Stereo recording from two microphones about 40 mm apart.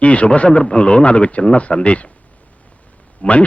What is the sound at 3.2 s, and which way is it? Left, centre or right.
Speech, left.